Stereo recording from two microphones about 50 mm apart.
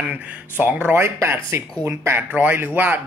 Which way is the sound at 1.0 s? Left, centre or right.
Right.